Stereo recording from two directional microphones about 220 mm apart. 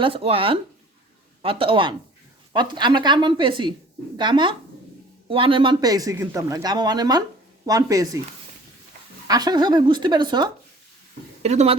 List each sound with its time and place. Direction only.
0.0 s speech: 25° right (ahead or behind)
9.2 s speech: 15° right (ahead or behind)